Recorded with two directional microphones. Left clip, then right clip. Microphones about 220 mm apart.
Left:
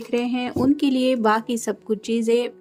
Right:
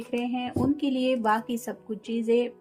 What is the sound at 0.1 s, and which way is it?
Speech, 45° left (ahead or behind).